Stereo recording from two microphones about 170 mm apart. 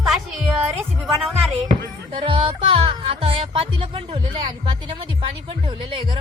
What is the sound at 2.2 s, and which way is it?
Speech, 30° right (ahead or behind).